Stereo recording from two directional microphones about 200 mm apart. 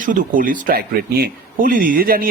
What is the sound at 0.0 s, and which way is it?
Speech, 40° right (ahead or behind).